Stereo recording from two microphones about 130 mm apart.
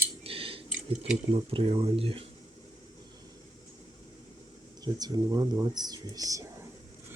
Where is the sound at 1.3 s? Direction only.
50° right (ahead or behind).